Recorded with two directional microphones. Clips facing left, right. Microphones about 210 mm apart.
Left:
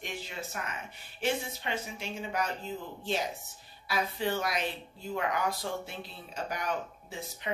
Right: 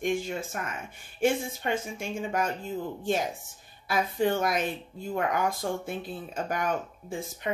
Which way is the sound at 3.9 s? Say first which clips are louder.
Right 5 dB; 50° right (ahead or behind).